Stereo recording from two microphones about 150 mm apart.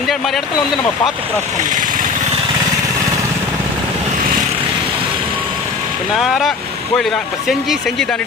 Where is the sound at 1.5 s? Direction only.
60° right (ahead or behind).